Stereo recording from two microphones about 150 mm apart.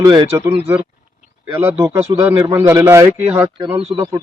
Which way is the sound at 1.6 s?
15° right (ahead or behind).